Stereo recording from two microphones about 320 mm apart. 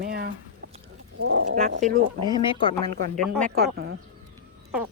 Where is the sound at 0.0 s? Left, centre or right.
Right.